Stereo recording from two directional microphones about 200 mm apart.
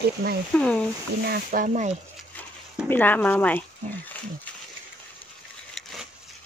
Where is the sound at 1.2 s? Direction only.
45° right (ahead or behind).